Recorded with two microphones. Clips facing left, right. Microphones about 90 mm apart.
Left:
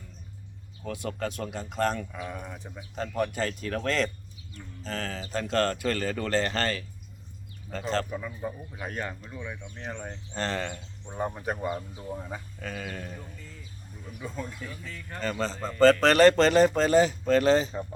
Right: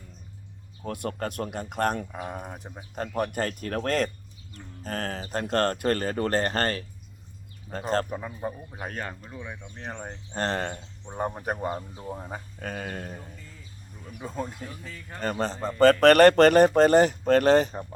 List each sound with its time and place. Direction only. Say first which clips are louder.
0.9 s speech: right 1 dB; 50° right (ahead or behind)
3.2 s speech: right 1 dB; 50° right (ahead or behind)
9.3 s speech: even; 15° right (ahead or behind)
9.7 s speech: right 3 dB; 40° right (ahead or behind)
10.8 s speech: right 1 dB; 20° right (ahead or behind)
11.6 s speech: right 1 dB; 35° right (ahead or behind)
12.0 s speech: even; 20° right (ahead or behind)
12.3 s speech: right 2 dB; 45° right (ahead or behind)
15.2 s speech: right 2 dB; 50° right (ahead or behind)